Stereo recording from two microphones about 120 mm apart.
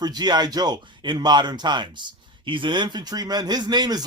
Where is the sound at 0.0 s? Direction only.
35° right (ahead or behind).